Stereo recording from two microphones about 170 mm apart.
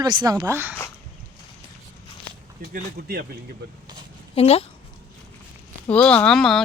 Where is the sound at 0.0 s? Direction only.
25° right (ahead or behind).